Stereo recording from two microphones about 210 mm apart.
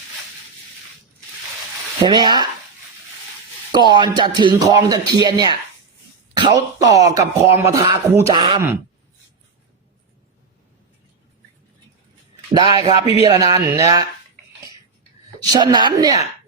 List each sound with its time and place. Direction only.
2.0 s speech: 20° right (ahead or behind)
3.7 s speech: 20° right (ahead or behind)
12.5 s speech: 25° right (ahead or behind)
15.4 s speech: 20° right (ahead or behind)